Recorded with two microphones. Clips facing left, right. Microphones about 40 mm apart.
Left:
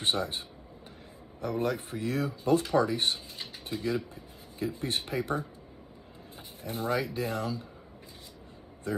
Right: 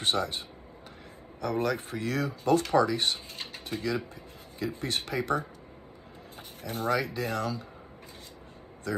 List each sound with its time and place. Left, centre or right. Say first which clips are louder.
0.0 s speech: right 1 dB; right
1.4 s speech: right 2 dB; right
6.6 s speech: right 2 dB; right